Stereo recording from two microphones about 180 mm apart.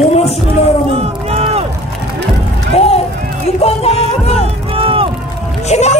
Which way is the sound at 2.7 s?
35° left (ahead or behind).